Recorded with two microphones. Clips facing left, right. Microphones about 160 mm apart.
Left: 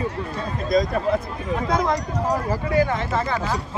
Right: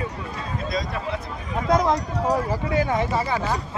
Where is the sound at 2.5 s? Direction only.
15° right (ahead or behind).